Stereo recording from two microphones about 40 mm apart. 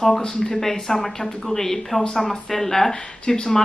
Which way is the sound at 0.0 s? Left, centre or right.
Centre.